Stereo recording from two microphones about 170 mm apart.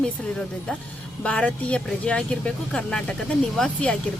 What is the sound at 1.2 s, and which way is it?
A woman's voice, 10° left (ahead or behind).